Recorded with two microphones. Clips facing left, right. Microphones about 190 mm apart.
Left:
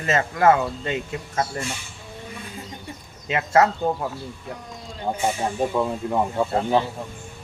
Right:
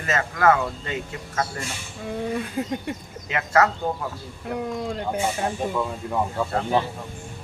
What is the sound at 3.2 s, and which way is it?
Speech, 25° left (ahead or behind).